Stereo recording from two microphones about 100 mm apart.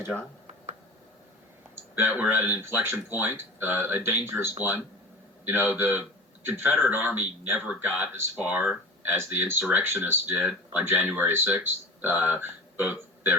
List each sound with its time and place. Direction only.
0.1 s speech: centre (ahead or behind)
1.7 s speech: 20° right (ahead or behind)
9.1 s speech: 25° right (ahead or behind)